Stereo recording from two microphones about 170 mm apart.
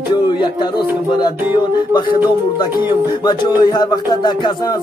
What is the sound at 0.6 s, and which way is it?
Music, 25° left (ahead or behind).